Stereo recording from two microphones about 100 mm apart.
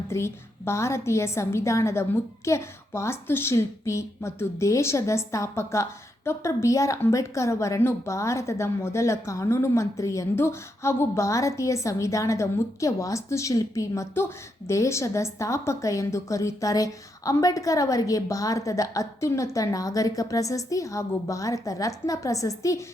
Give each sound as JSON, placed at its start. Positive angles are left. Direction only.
{"t": 0.1, "sound": "a woman's voice", "side_deg": 25}